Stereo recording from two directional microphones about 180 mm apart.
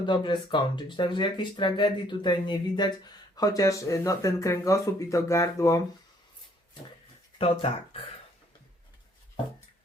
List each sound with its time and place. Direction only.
0.0 s speech: 25° left (ahead or behind)